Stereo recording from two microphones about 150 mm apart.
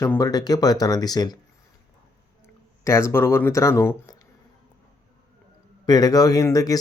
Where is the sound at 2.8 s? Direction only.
20° left (ahead or behind).